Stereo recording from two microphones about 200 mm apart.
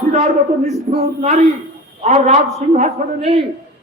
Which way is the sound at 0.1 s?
30° right (ahead or behind).